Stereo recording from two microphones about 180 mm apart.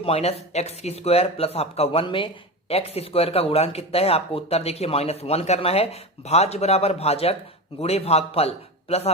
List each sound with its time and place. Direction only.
0.0 s speech: 35° left (ahead or behind)